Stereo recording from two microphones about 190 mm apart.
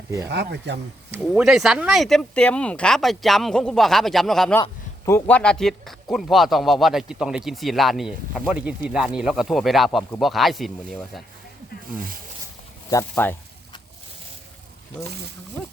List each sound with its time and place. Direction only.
0.3 s speech: 60° right (ahead or behind)
1.1 s speech: 5° right (ahead or behind)
5.0 s speech: 15° left (ahead or behind)
12.9 s speech: 15° left (ahead or behind)